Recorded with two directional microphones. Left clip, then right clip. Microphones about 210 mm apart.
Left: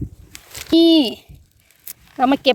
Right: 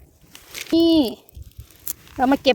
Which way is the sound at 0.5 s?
5° left (ahead or behind).